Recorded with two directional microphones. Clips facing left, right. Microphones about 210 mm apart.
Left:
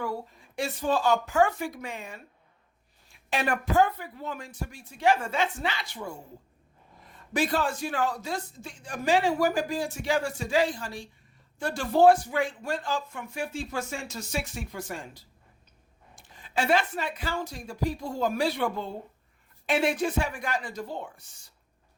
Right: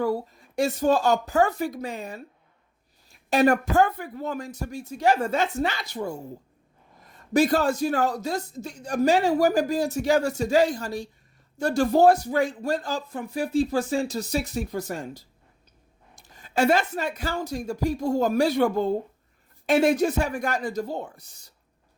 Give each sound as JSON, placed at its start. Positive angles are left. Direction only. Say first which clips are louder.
{"t": 0.0, "sound": "a man's voice", "louder": "right 8 dB", "side_deg": -40}